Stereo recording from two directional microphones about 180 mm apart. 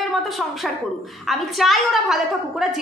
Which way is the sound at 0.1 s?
Centre (ahead or behind).